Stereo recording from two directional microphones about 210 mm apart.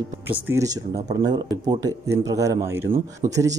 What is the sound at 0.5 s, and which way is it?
Speech, 15° right (ahead or behind).